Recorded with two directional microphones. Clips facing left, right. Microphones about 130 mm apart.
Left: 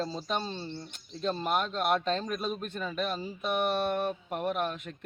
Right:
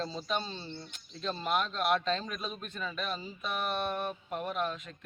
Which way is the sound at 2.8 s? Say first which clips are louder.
Left 4 dB; 30° left (ahead or behind).